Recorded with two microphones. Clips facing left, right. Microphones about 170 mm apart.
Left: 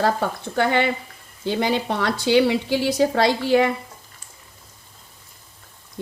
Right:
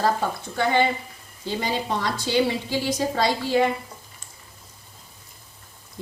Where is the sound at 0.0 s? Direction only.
65° left (ahead or behind).